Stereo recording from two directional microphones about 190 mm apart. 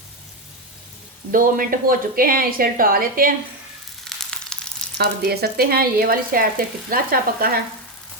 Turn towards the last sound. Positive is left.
turn(degrees=-50)  # may be behind; listen again after turning